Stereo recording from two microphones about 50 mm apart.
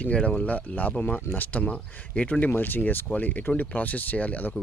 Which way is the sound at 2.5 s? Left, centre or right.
Left.